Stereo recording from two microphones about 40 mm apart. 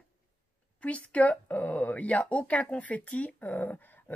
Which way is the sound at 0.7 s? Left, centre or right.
Left.